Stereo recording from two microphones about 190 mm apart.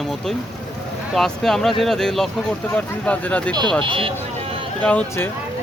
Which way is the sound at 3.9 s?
30° right (ahead or behind).